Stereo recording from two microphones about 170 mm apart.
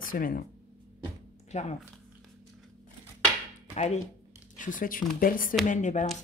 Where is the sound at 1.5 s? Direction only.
40° left (ahead or behind).